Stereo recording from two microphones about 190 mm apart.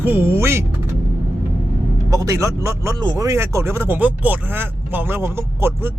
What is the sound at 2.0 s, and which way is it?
Speech, 15° right (ahead or behind).